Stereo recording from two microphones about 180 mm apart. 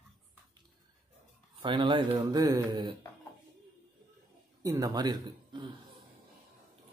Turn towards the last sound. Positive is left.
turn(degrees=-25)  # may be behind; listen again after turning